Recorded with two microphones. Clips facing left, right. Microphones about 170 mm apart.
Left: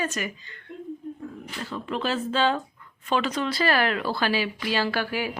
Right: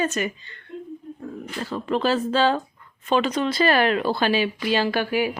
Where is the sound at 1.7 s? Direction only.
40° right (ahead or behind).